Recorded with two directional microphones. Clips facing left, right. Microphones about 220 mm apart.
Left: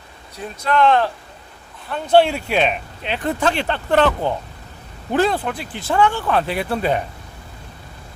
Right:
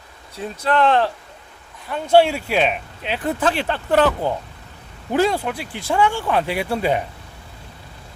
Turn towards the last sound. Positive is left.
turn(degrees=-10)  # may be behind; listen again after turning